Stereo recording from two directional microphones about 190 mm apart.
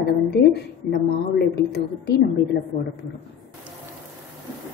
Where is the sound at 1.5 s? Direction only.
60° left (ahead or behind).